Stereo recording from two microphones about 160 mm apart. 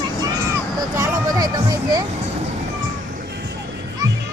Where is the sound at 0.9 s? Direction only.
20° right (ahead or behind).